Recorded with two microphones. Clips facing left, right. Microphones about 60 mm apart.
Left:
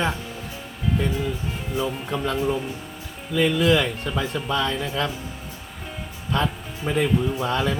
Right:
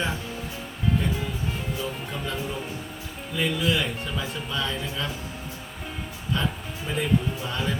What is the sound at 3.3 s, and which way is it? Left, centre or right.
Speech, left.